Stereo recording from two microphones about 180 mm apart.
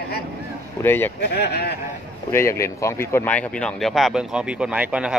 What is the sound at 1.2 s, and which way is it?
Speech, 60° left (ahead or behind).